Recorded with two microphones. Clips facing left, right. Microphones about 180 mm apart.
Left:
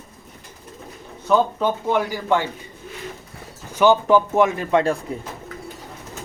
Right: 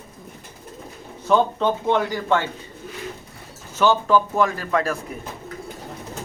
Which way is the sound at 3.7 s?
15° left (ahead or behind).